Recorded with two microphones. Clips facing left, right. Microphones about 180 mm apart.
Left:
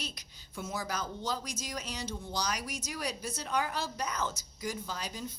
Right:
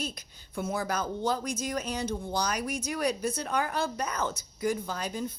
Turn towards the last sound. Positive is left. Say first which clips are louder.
# right 6 dB
turn(degrees=-55)  # may be behind; listen again after turning